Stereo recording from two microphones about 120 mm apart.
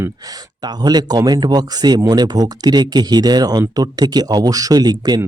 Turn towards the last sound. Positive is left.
turn(degrees=-35)  # may be behind; listen again after turning